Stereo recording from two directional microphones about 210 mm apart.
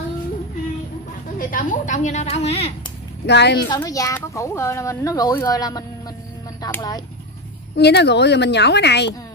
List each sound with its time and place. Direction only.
1.4 s a woman's voice: 40° left (ahead or behind)
3.3 s a woman's voice: 55° left (ahead or behind)
3.6 s speech: 20° left (ahead or behind)
7.7 s a woman's voice: 55° left (ahead or behind)